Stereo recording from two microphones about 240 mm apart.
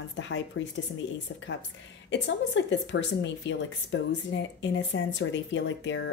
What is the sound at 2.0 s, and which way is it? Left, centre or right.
Speech, left.